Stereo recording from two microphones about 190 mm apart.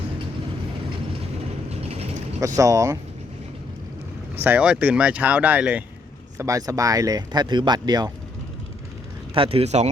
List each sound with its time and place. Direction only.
2.6 s speech: 15° right (ahead or behind)
4.4 s speech: 5° right (ahead or behind)
9.3 s speech: 30° right (ahead or behind)